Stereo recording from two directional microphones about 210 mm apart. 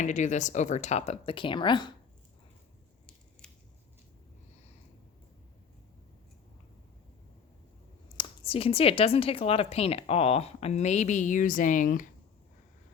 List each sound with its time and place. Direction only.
0.0 s speech: 35° left (ahead or behind)
3.4 s scissors: 5° left (ahead or behind)
8.1 s speech: 25° left (ahead or behind)